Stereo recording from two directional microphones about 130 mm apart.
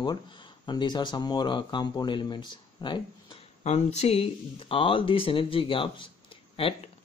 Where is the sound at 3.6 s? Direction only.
60° left (ahead or behind); by 6.1 s 40° left (ahead or behind).